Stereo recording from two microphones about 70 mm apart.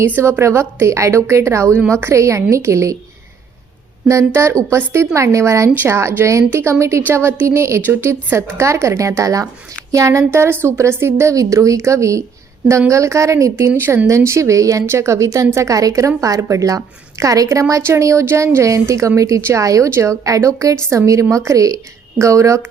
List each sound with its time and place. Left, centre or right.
0.2 s a woman's voice: right
4.1 s a woman's voice: right